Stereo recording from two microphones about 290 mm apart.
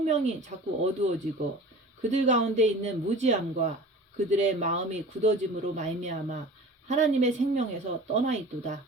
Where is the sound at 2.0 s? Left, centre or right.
Right.